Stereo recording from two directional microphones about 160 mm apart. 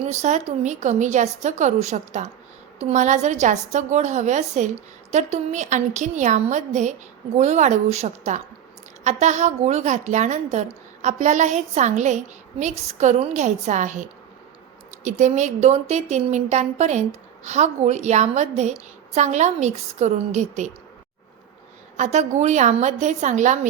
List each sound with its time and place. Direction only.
0.0 s a woman's voice: 45° right (ahead or behind)
15.2 s a woman's voice: 45° right (ahead or behind)
21.9 s a woman's voice: 45° right (ahead or behind)